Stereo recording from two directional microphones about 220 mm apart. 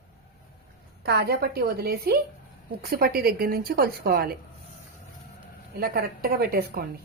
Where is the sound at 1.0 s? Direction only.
45° right (ahead or behind).